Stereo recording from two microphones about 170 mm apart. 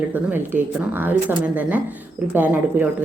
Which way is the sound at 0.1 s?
10° right (ahead or behind).